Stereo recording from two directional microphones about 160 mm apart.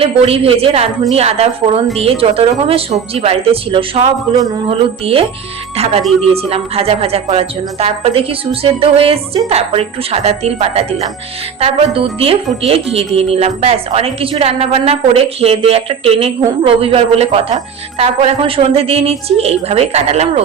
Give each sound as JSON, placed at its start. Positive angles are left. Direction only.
{"t": 0.0, "sound": "speech", "side_deg": -35}